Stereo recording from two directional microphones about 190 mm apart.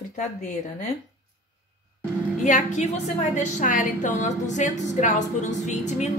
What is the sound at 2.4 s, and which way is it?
A woman's voice, 40° left (ahead or behind).